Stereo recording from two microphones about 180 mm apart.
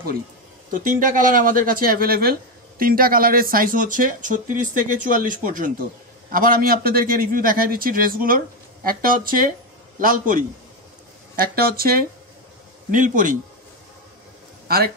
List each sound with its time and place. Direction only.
0.7 s speech: 50° right (ahead or behind)